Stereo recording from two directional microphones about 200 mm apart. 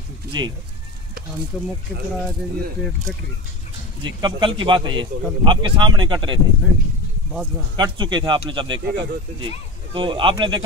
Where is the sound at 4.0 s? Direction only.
25° right (ahead or behind).